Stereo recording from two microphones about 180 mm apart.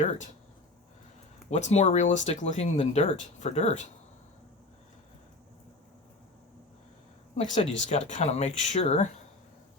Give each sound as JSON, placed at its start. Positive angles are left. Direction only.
{"t": 1.5, "sound": "speech", "side_deg": 40}
{"t": 7.3, "sound": "speech", "side_deg": 40}